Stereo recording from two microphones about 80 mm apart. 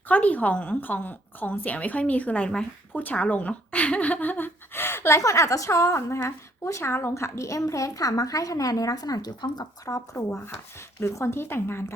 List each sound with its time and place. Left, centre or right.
0.1 s a woman's voice: left